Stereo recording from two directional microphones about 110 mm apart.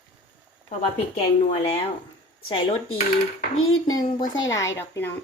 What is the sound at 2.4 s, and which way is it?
Speech, 55° left (ahead or behind).